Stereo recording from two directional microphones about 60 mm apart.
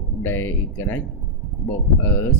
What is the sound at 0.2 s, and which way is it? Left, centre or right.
Speech, left.